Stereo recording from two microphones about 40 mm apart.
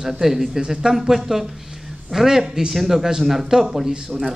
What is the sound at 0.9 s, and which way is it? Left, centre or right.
Speech, centre.